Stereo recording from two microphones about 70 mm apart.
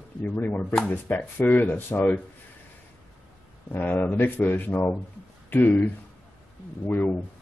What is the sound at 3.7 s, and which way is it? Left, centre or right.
Speech, left.